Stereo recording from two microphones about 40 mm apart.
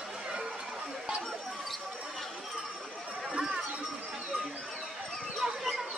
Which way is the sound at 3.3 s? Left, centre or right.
Right.